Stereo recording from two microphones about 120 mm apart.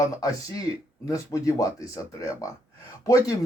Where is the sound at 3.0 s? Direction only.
30° left (ahead or behind).